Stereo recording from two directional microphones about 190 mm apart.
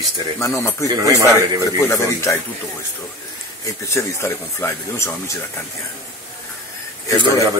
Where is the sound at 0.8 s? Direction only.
15° right (ahead or behind).